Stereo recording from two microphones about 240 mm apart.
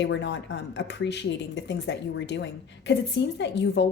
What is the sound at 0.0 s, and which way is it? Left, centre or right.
A woman's voice, left.